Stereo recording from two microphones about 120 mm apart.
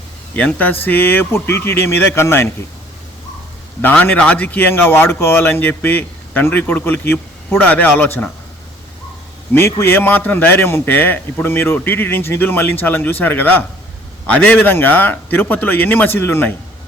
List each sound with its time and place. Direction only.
0.3 s a man's voice: 15° left (ahead or behind)
3.8 s a man's voice: 15° left (ahead or behind)
9.6 s a man's voice: 20° left (ahead or behind)